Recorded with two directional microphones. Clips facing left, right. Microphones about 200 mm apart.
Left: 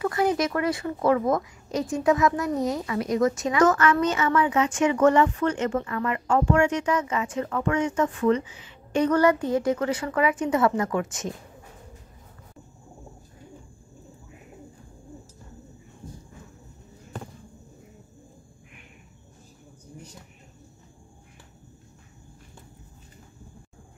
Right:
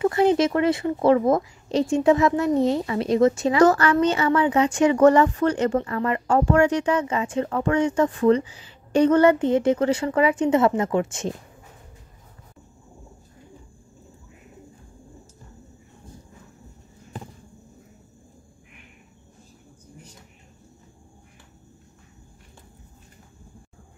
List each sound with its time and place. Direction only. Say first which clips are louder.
0.0 s speech: right 5 dB; 25° right (ahead or behind)